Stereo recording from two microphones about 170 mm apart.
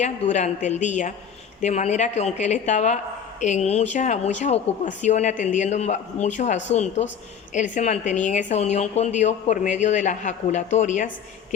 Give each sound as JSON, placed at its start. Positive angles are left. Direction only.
{"t": 0.0, "sound": "a woman's voice", "side_deg": 45}